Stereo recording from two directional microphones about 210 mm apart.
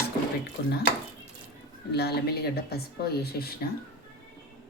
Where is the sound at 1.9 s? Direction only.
50° left (ahead or behind).